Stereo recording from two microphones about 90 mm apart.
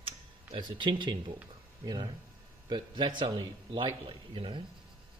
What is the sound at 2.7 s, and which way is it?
Speech, 60° right (ahead or behind).